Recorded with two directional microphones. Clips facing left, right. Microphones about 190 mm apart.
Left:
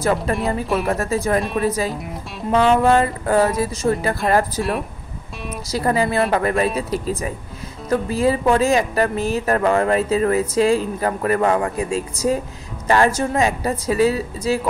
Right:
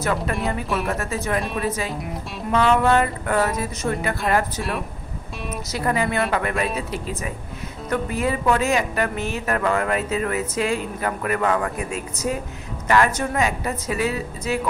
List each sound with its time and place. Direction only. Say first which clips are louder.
0.8 s a woman's voice: left 5 dB; 35° left (ahead or behind)